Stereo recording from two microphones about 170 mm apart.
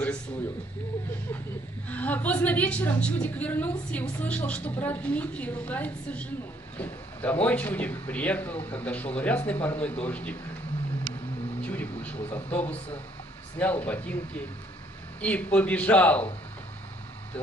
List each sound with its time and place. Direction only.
1.9 s a woman's voice: 10° left (ahead or behind)
11.6 s a woman's voice: 10° left (ahead or behind)
15.2 s a woman's voice: 10° left (ahead or behind)